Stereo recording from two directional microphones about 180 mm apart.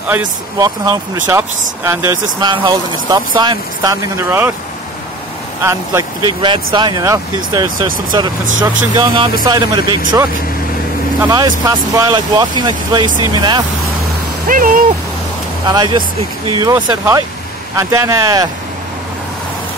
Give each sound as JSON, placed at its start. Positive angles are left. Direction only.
{"t": 0.6, "sound": "speech", "side_deg": -20}
{"t": 5.6, "sound": "speech", "side_deg": -15}
{"t": 6.4, "sound": "speech", "side_deg": -25}
{"t": 11.1, "sound": "speech", "side_deg": -20}
{"t": 14.5, "sound": "speech", "side_deg": -50}
{"t": 15.6, "sound": "speech", "side_deg": -25}
{"t": 17.7, "sound": "speech", "side_deg": -15}